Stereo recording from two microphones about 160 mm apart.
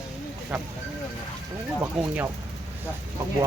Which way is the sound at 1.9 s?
10° right (ahead or behind).